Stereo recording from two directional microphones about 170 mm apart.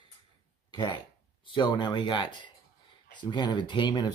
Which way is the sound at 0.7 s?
25° left (ahead or behind).